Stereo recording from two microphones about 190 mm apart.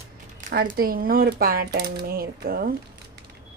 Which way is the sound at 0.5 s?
55° right (ahead or behind).